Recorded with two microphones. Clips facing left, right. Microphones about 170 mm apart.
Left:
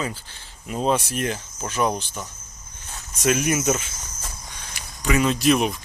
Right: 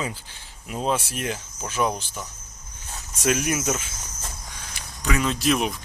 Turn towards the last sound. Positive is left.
turn(degrees=0)  # may be behind; listen again after turning